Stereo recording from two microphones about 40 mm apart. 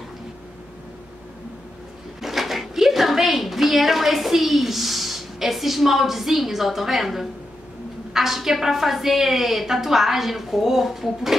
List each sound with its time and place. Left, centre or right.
2.2 s a woman's voice: centre